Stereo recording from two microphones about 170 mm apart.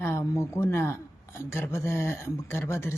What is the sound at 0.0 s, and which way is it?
A woman's voice, 15° left (ahead or behind).